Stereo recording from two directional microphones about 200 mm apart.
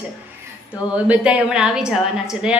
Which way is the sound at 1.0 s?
5° right (ahead or behind).